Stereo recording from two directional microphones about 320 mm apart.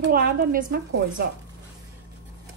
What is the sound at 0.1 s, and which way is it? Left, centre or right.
Speech, right.